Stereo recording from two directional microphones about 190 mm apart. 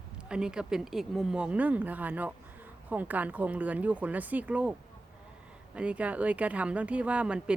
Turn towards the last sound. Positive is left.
turn(degrees=-5)  # may be behind; listen again after turning